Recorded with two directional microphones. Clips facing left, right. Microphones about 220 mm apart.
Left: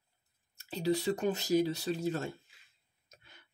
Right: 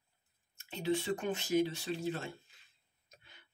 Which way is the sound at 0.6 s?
35° left (ahead or behind).